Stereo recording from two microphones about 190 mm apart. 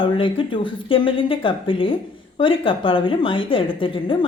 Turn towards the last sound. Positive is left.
turn(degrees=25)  # may be behind; listen again after turning